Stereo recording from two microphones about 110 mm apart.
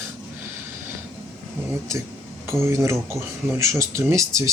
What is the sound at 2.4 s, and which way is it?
Speech, 25° right (ahead or behind).